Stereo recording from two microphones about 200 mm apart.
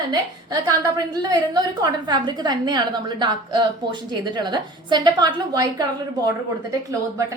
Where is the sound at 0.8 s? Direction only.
20° right (ahead or behind).